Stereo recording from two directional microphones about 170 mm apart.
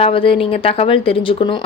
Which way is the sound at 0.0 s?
30° left (ahead or behind).